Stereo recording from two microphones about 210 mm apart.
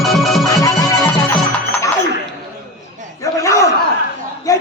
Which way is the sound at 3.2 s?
15° left (ahead or behind).